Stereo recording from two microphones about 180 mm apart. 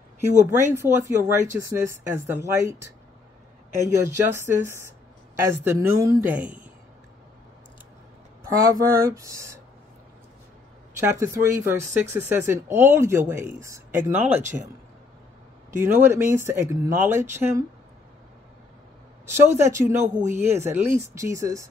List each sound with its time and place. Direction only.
0.5 s speech: 15° right (ahead or behind)
4.6 s speech: 15° right (ahead or behind)
8.5 s speech: 20° right (ahead or behind)
11.0 s speech: 15° right (ahead or behind)
14.4 s a man's voice: 45° right (ahead or behind)
15.7 s speech: 15° right (ahead or behind)
19.3 s speech: 15° right (ahead or behind)